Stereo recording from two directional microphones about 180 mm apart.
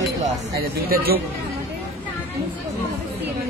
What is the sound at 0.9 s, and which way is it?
Speech, 55° right (ahead or behind).